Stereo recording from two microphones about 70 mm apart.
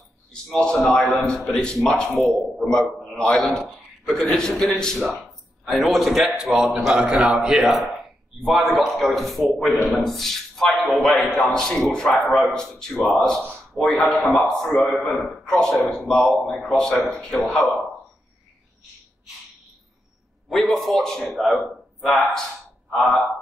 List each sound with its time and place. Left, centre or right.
0.3 s a man's voice: centre
2.1 s a man's voice: centre
2.6 s a man's voice: centre
6.6 s a man's voice: centre
17.4 s a man's voice: left
20.4 s a man's voice: centre